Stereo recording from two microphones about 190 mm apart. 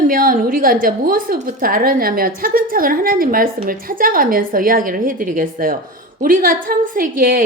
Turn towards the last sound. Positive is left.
turn(degrees=-50)  # may be behind; listen again after turning